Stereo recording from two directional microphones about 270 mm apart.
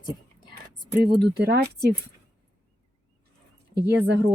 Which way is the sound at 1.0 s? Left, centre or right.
Right.